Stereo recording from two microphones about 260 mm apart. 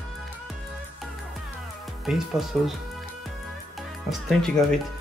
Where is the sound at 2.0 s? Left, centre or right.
Centre.